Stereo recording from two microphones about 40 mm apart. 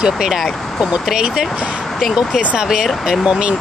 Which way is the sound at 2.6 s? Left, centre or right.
Centre.